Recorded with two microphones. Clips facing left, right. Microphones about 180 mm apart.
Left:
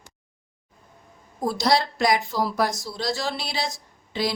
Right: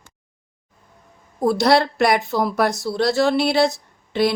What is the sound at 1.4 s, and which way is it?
Speech, 60° right (ahead or behind).